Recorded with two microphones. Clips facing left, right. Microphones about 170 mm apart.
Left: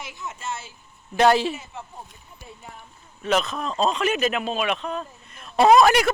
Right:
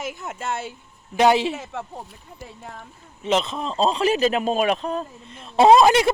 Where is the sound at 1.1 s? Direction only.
15° right (ahead or behind).